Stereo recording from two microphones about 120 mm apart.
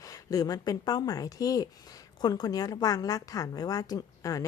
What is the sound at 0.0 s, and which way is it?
A woman's voice, 30° left (ahead or behind).